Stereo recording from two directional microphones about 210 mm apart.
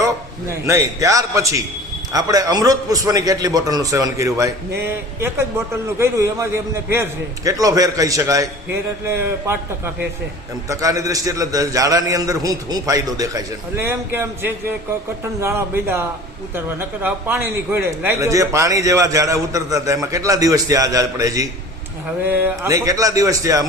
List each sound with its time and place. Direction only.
0.7 s a man's voice: 15° right (ahead or behind)